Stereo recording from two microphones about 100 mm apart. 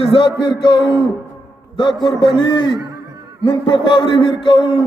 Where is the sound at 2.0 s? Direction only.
50° left (ahead or behind).